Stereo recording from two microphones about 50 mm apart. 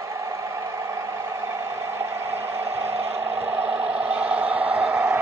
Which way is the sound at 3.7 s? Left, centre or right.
Right.